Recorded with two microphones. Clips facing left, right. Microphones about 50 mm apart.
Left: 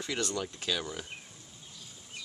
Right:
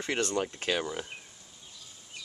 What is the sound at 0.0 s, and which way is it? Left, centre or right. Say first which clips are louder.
Speech: right 4 dB; right.